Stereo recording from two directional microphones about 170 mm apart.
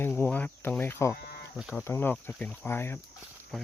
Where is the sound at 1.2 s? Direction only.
70° left (ahead or behind).